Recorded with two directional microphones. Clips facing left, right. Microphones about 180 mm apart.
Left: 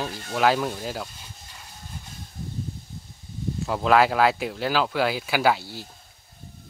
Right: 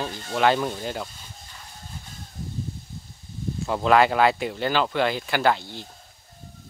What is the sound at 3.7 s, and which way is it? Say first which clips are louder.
Speech: right 1 dB; centre (ahead or behind).